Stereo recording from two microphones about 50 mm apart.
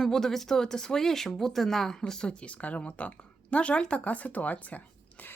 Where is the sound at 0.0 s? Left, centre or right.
Centre.